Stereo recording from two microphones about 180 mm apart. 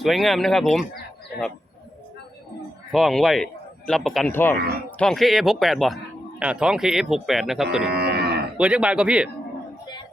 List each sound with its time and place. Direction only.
0.0 s speech: centre (ahead or behind)
2.9 s speech: centre (ahead or behind)
4.3 s speech: 10° left (ahead or behind)
7.9 s moo: 65° right (ahead or behind)
8.5 s speech: 5° right (ahead or behind)